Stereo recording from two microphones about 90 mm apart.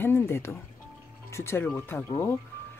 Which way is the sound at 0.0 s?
25° left (ahead or behind).